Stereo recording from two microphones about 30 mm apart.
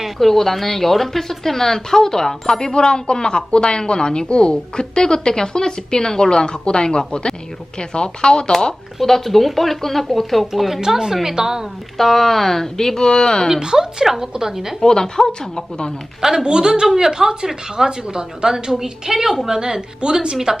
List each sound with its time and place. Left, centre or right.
0.2 s a woman's voice: centre; by 8.5 s left
9.0 s speech: centre
10.8 s a woman's voice: centre
11.9 s a woman's voice: centre; by 13.5 s left
13.6 s a woman's voice: centre
14.8 s a woman's voice: left
16.2 s a woman's voice: centre
16.8 s a woman's voice: centre